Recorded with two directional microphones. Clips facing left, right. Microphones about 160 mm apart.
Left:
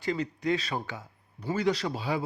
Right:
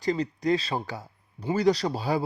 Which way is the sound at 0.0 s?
40° right (ahead or behind).